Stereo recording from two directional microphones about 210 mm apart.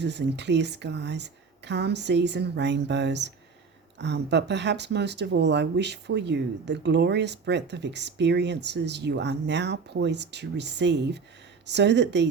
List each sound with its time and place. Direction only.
0.0 s speech: 55° right (ahead or behind)